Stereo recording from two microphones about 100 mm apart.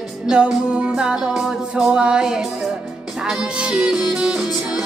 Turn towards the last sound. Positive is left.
turn(degrees=-10)  # may be behind; listen again after turning